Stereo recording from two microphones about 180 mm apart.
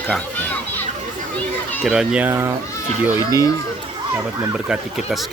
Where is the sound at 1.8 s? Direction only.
5° right (ahead or behind).